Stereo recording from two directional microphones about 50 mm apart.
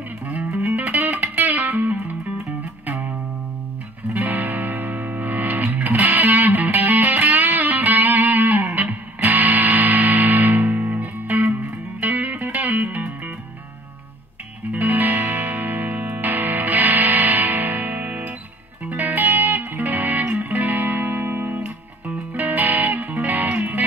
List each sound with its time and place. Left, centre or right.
0.5 s music: right
4.1 s music: right
14.7 s music: right